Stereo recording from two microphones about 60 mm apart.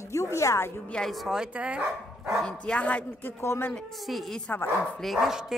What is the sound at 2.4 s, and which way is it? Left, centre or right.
Speech, centre.